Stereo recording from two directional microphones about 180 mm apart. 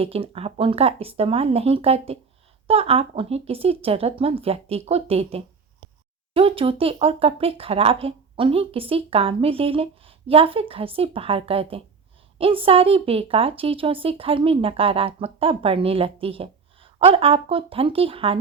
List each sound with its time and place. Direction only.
0.0 s a woman's voice: 35° right (ahead or behind)